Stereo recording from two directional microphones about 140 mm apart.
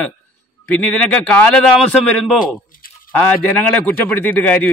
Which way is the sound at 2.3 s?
75° left (ahead or behind).